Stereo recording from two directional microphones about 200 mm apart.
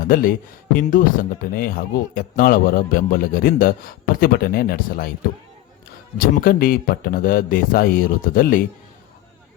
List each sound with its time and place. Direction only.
0.0 s speech: 45° left (ahead or behind)
6.1 s speech: 45° left (ahead or behind)